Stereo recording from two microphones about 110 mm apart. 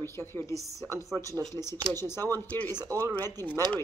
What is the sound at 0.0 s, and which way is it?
Speech, 25° left (ahead or behind).